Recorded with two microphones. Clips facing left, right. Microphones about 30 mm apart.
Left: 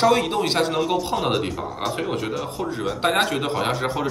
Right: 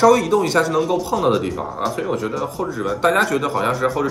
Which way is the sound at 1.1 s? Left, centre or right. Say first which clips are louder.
Right 4 dB; centre.